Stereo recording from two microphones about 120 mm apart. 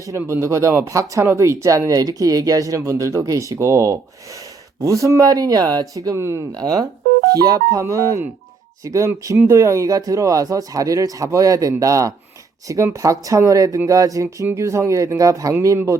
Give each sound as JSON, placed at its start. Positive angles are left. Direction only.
{"t": 0.2, "sound": "speech", "side_deg": -20}